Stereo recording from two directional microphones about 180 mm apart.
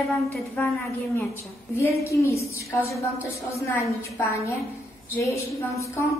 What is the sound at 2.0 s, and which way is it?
A woman's voice, 15° left (ahead or behind).